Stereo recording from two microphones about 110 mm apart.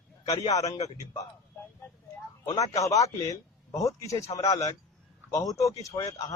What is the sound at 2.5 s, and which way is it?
A man's voice, 30° left (ahead or behind).